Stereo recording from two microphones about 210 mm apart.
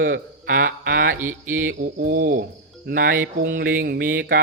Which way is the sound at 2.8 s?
45° right (ahead or behind).